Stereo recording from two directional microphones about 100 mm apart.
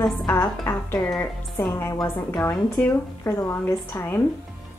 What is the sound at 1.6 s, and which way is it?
Speech, 25° left (ahead or behind).